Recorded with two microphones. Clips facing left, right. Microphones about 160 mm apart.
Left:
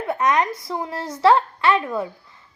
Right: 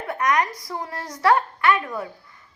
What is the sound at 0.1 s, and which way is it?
A woman's voice, 25° left (ahead or behind).